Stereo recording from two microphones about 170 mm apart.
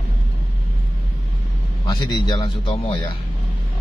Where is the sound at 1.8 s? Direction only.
25° left (ahead or behind).